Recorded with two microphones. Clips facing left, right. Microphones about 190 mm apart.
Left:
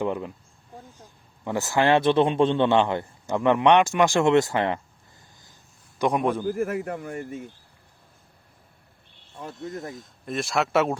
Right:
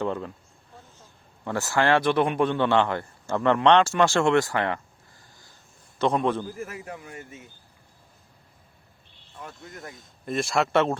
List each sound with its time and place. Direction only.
0.0 s speech: 15° left (ahead or behind)
6.0 s a man's voice: 15° left (ahead or behind)
6.5 s a man's voice: 60° left (ahead or behind)
9.3 s snake: 25° left (ahead or behind)
9.6 s speech: centre (ahead or behind)